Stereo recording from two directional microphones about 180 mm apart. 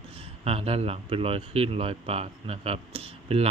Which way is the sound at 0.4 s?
35° right (ahead or behind).